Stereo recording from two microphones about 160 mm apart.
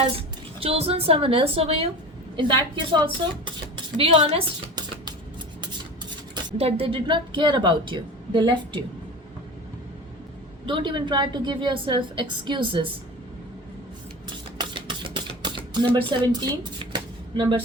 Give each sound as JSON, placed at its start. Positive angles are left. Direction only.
{"t": 0.2, "sound": "a woman's voice", "side_deg": -35}
{"t": 2.9, "sound": "a woman's voice", "side_deg": -30}
{"t": 6.6, "sound": "a woman's voice", "side_deg": -35}
{"t": 10.7, "sound": "a woman's voice", "side_deg": -30}
{"t": 14.6, "sound": "a sound", "side_deg": -30}